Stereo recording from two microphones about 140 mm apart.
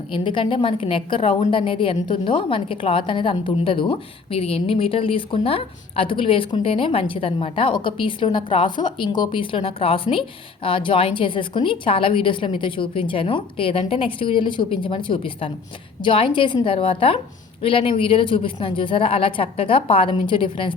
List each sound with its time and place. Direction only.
0.1 s a woman's voice: 35° left (ahead or behind)